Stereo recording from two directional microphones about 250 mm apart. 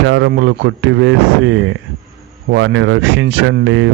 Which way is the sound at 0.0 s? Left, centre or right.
Right.